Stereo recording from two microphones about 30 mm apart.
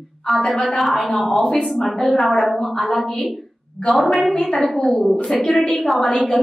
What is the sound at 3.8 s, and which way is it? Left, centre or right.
A woman's voice, centre.